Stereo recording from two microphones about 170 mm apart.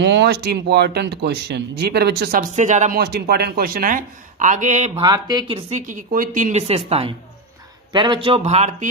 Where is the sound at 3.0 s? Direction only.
70° right (ahead or behind); by 4.9 s 45° right (ahead or behind).